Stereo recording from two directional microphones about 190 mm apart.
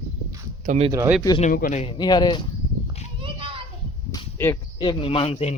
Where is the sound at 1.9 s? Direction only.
20° left (ahead or behind).